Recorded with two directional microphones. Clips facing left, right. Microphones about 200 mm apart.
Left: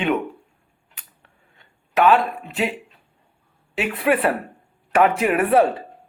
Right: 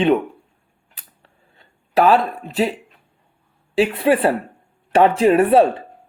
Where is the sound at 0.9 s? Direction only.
35° right (ahead or behind).